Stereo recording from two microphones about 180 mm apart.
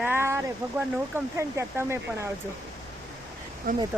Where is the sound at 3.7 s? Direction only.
50° right (ahead or behind).